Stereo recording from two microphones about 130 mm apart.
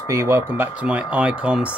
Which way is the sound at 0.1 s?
20° right (ahead or behind).